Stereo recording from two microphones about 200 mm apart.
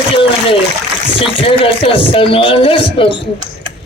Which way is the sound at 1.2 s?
25° left (ahead or behind).